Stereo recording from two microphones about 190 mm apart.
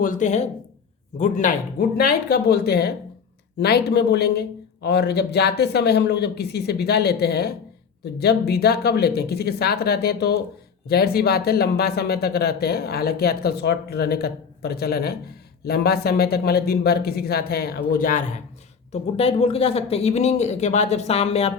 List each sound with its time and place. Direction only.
0.0 s speech: 40° left (ahead or behind)
2.0 s speech: 55° left (ahead or behind)
18.9 s speech: 30° left (ahead or behind)